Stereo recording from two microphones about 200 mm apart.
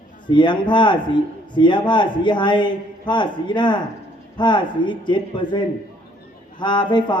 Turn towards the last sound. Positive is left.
turn(degrees=25)  # may be behind; listen again after turning